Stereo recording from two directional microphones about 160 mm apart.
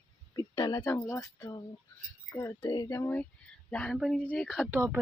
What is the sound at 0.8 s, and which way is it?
Speech, 15° left (ahead or behind).